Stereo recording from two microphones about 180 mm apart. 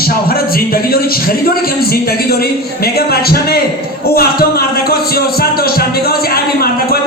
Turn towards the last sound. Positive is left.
turn(degrees=60)  # may be behind; listen again after turning